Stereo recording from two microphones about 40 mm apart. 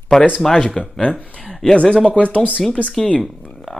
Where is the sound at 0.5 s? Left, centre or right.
Left.